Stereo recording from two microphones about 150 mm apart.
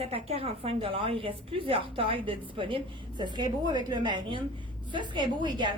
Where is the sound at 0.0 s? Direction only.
40° right (ahead or behind).